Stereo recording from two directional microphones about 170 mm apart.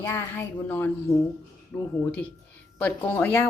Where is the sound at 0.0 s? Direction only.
15° left (ahead or behind).